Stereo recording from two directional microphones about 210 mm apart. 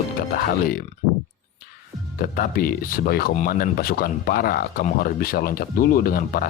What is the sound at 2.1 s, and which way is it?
Speech, 45° left (ahead or behind).